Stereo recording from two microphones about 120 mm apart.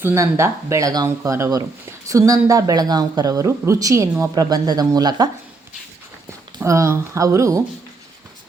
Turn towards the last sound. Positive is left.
turn(degrees=-25)  # may be behind; listen again after turning